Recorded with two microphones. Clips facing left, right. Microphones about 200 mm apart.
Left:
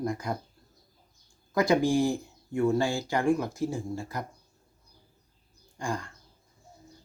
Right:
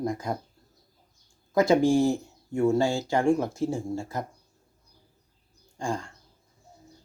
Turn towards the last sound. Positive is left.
turn(degrees=-25)  # may be behind; listen again after turning